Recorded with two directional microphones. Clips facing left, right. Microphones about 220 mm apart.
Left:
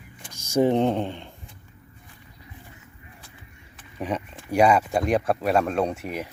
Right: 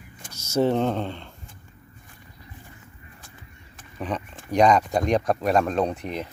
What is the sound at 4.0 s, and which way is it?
Speech, 10° left (ahead or behind).